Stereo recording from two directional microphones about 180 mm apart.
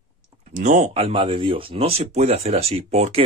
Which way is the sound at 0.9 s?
30° right (ahead or behind).